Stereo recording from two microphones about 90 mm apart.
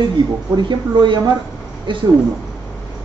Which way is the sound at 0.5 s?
60° right (ahead or behind).